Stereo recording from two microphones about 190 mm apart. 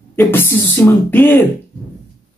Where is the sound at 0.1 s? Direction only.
10° left (ahead or behind).